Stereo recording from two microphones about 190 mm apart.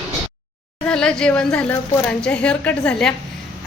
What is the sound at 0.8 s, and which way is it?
A woman's voice, 5° left (ahead or behind).